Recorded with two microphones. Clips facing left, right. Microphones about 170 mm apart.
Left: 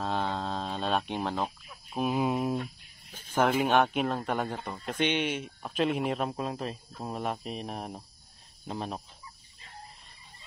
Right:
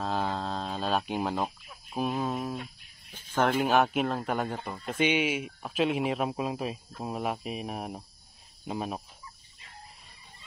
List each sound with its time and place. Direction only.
0.0 s livestock: centre (ahead or behind)
2.0 s speech: 10° left (ahead or behind)
3.3 s speech: 5° left (ahead or behind)